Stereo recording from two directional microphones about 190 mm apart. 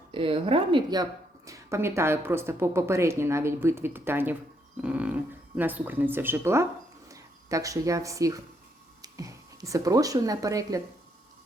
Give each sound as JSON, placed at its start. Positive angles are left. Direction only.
{"t": 0.1, "sound": "a woman's voice", "side_deg": -30}
{"t": 4.8, "sound": "a sound", "side_deg": -5}
{"t": 5.5, "sound": "a woman's voice", "side_deg": -10}